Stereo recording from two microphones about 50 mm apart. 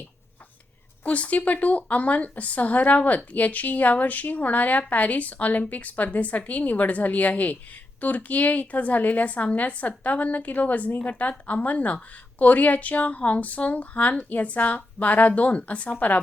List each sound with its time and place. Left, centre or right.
1.0 s a woman's voice: left